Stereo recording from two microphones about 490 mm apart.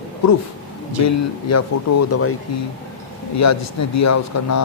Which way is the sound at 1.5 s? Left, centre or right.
Left.